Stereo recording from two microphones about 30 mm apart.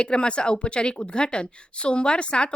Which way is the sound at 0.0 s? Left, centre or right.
Left.